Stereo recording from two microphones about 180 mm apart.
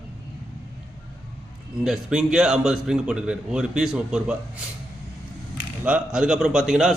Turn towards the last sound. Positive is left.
turn(degrees=-5)  # may be behind; listen again after turning